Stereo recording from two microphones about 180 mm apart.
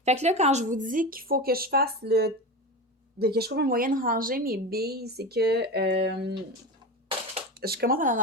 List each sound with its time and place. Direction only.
0.0 s a woman's voice: 40° right (ahead or behind); by 6.3 s 65° right (ahead or behind)
7.5 s speech: 60° right (ahead or behind)